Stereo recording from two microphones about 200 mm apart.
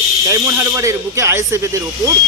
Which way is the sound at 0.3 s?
15° right (ahead or behind).